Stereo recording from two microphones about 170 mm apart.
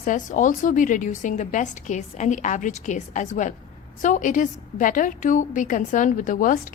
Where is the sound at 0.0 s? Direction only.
50° left (ahead or behind).